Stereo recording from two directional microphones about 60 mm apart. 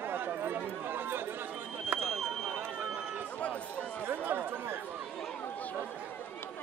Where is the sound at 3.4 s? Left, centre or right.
Left.